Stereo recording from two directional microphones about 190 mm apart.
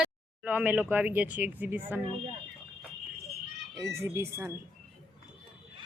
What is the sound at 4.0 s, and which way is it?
Speech, 15° right (ahead or behind).